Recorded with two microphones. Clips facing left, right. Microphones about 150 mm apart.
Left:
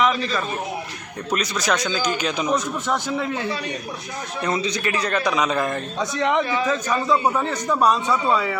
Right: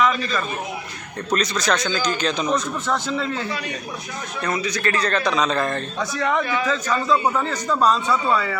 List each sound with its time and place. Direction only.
0.0 s a sound: 25° left (ahead or behind)
1.3 s a man's voice: 10° left (ahead or behind)
4.8 s a man's voice: 10° left (ahead or behind)